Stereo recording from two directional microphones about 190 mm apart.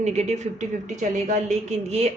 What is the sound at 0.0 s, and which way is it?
Speech, 35° right (ahead or behind).